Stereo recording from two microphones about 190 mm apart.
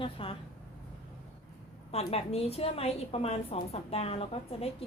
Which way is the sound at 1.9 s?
30° left (ahead or behind).